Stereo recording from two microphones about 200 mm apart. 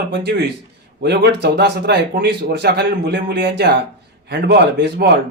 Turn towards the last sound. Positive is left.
turn(degrees=-55)  # may be behind; listen again after turning